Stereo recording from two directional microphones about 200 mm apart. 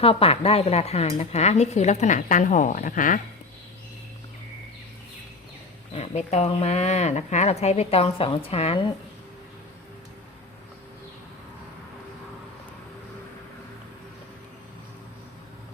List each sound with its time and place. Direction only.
0.0 s a woman's voice: 30° left (ahead or behind)
5.9 s a woman's voice: 35° left (ahead or behind)